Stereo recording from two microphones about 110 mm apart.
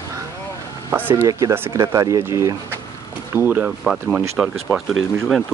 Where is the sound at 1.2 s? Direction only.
30° right (ahead or behind).